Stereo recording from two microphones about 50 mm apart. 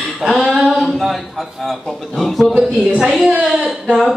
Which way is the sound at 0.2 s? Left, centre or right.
Centre.